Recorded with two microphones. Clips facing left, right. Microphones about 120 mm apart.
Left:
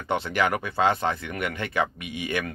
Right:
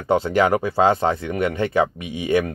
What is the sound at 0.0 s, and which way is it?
Speech, 35° right (ahead or behind).